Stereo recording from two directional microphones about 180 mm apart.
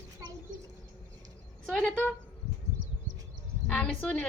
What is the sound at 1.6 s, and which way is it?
Speech, 5° left (ahead or behind).